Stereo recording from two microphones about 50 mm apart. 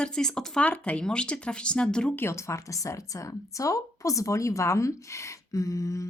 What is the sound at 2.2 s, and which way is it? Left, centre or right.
Speech, left.